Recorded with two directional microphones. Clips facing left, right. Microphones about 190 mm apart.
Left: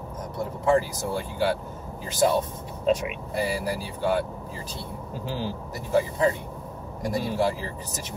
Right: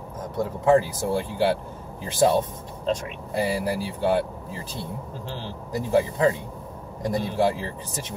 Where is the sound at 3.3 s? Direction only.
25° right (ahead or behind).